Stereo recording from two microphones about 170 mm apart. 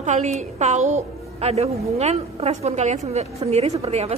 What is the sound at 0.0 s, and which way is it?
A woman's voice, 45° right (ahead or behind).